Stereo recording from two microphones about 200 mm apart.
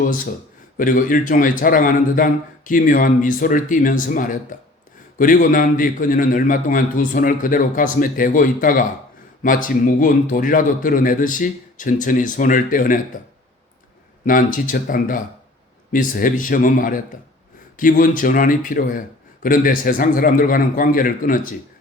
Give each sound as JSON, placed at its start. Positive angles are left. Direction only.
{"t": 0.8, "sound": "a man's voice", "side_deg": 45}
{"t": 14.3, "sound": "a man's voice", "side_deg": 40}